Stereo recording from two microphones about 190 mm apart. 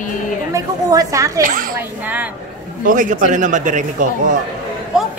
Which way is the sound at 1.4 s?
45° right (ahead or behind).